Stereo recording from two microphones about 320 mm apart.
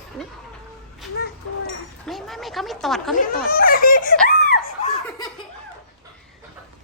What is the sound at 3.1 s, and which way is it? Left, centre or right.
Speech, left.